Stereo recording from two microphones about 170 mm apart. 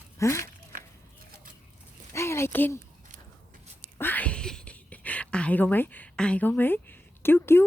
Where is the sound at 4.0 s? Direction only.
10° left (ahead or behind).